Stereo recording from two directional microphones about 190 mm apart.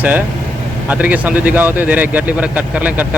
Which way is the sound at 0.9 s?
10° right (ahead or behind).